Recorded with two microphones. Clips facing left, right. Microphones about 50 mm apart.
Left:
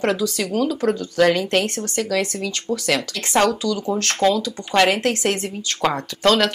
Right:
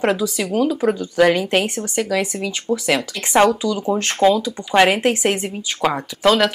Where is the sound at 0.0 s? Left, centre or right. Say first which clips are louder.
Right 2 dB; centre.